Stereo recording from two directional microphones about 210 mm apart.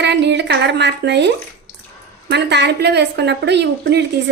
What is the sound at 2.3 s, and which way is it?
A woman's voice, 55° right (ahead or behind).